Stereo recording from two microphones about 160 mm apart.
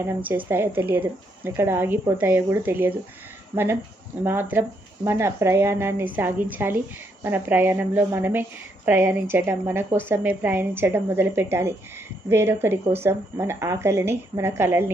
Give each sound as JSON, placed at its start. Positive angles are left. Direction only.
{"t": 0.3, "sound": "a woman's voice", "side_deg": -10}